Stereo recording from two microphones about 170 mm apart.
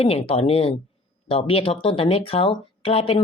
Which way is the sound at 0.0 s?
35° left (ahead or behind).